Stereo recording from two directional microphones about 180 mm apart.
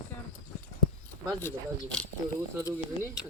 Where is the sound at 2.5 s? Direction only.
10° right (ahead or behind).